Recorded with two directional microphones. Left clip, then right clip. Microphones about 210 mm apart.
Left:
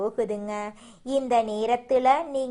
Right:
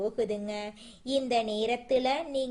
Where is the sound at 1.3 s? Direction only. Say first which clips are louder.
Left 7 dB; 30° left (ahead or behind).